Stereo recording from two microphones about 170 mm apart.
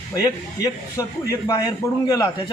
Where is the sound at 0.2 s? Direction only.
20° left (ahead or behind).